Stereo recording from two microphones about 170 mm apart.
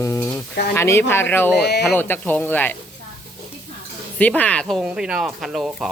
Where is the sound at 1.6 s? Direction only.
75° left (ahead or behind).